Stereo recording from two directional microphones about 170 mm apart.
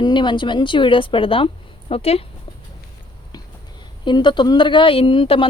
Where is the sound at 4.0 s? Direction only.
25° left (ahead or behind).